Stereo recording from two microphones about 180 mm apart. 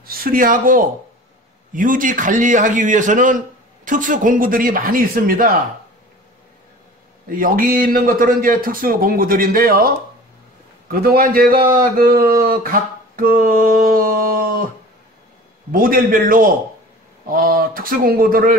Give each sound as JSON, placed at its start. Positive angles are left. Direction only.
{"t": 0.0, "sound": "speech", "side_deg": -55}
{"t": 7.2, "sound": "speech", "side_deg": -50}
{"t": 10.9, "sound": "speech", "side_deg": -55}
{"t": 15.7, "sound": "speech", "side_deg": -50}